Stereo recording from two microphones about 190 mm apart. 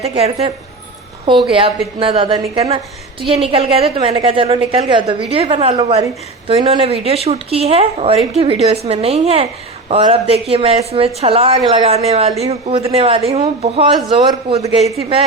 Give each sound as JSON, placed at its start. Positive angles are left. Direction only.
{"t": 0.0, "sound": "a woman's voice", "side_deg": -30}